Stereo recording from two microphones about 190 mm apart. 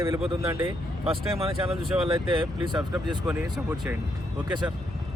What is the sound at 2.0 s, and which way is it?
Speech, 25° right (ahead or behind).